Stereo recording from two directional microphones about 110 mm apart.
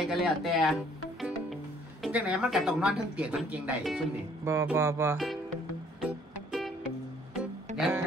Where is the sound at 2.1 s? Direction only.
10° right (ahead or behind).